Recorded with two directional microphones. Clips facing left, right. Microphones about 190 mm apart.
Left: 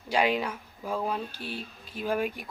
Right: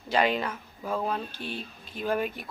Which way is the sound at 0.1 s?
10° left (ahead or behind).